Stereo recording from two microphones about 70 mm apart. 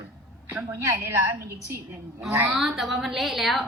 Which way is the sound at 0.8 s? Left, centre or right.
Right.